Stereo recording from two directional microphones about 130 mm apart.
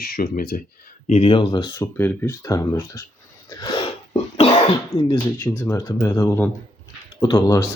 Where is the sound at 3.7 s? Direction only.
45° left (ahead or behind).